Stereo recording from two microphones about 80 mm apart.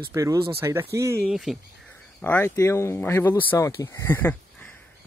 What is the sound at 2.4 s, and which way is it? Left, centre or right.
Speech, left.